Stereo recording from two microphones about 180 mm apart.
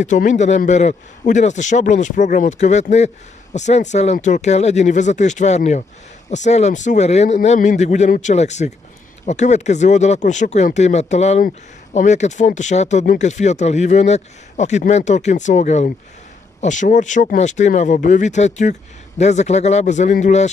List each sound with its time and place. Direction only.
0.0 s speech: 45° left (ahead or behind)